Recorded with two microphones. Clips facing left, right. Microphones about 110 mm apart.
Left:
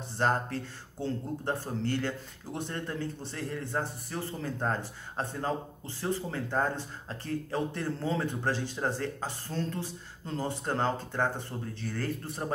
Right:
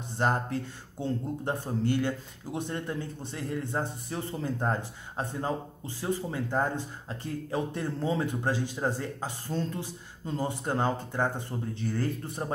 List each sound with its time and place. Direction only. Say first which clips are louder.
0.2 s a man's voice: right 1 dB; 15° right (ahead or behind)